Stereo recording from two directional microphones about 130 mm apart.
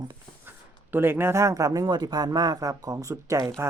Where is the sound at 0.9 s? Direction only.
15° right (ahead or behind).